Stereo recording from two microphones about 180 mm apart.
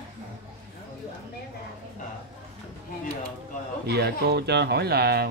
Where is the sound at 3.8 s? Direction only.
65° right (ahead or behind).